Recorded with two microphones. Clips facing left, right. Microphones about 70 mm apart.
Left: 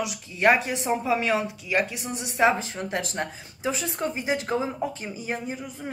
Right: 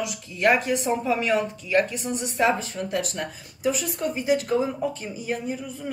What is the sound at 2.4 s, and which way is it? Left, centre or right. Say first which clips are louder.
Speech: left 1 dB; left.